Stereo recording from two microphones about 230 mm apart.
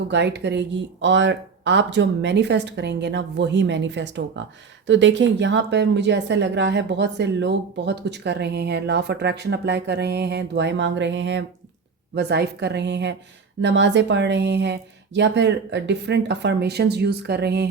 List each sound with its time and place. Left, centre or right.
0.1 s speech: right